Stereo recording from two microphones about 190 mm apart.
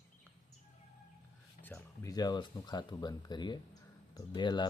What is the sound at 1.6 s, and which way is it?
Speech, 15° left (ahead or behind).